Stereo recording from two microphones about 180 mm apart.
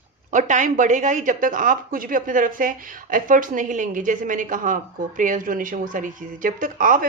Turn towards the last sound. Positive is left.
turn(degrees=-50)  # may be behind; listen again after turning